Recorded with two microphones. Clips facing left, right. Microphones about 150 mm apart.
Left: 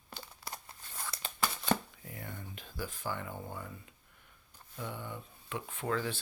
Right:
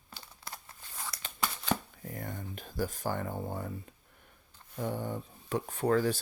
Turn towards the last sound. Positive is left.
turn(degrees=-40)  # may be behind; listen again after turning